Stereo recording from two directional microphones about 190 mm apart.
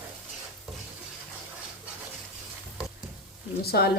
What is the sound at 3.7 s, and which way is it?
Speech, 60° left (ahead or behind).